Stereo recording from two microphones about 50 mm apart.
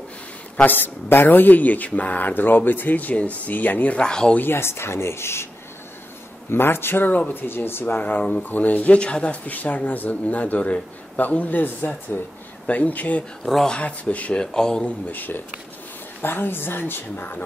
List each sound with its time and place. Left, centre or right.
0.7 s speech: left
4.0 s speech: centre
4.4 s speech: left
6.5 s a woman's voice: left
7.1 s speech: left
7.3 s a woman's voice: left
8.0 s speech: left
13.5 s speech: centre
13.7 s speech: left
14.8 s a woman's voice: left